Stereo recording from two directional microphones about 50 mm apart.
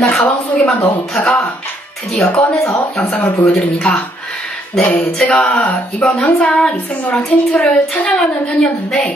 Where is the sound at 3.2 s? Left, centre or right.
Left.